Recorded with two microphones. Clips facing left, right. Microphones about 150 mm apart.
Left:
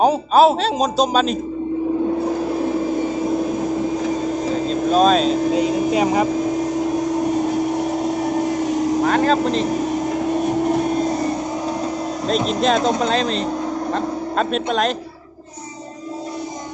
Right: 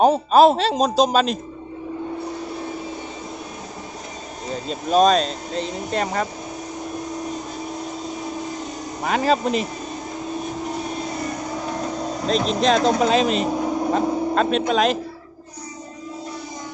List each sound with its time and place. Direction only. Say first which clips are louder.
0.0 s a man's voice: even; centre (ahead or behind)
4.9 s a man's voice: left 1 dB; centre (ahead or behind)
7.8 s vehicle: left 10 dB; 70° left (ahead or behind)
9.0 s a man's voice: right 1 dB; 5° right (ahead or behind)
12.2 s a man's voice: left 1 dB; centre (ahead or behind)
14.3 s a man's voice: left 1 dB; centre (ahead or behind)